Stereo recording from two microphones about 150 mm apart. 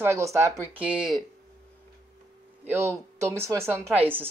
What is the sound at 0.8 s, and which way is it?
Speech, 5° right (ahead or behind).